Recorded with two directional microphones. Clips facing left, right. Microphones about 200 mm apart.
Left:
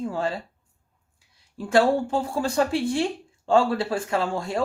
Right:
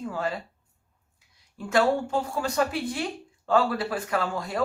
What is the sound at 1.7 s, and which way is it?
Speech, 30° left (ahead or behind).